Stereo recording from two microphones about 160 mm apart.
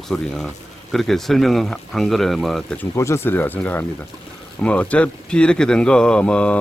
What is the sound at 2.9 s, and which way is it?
Speech, 20° left (ahead or behind).